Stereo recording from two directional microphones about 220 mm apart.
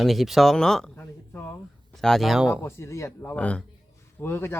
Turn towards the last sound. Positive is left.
turn(degrees=10)  # may be behind; listen again after turning